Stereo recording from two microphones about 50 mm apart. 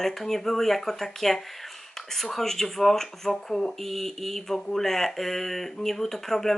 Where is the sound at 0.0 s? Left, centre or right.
Centre.